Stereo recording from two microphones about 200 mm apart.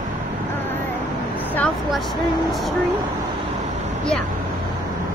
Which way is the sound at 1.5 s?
5° left (ahead or behind).